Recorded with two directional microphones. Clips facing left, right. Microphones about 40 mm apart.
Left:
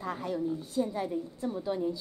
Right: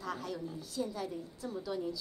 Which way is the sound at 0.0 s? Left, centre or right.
Left.